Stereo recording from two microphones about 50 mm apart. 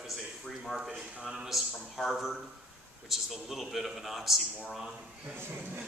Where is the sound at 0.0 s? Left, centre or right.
Centre.